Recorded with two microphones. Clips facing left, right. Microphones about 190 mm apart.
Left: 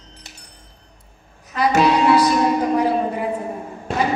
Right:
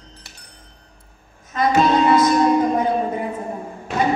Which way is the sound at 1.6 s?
70° left (ahead or behind).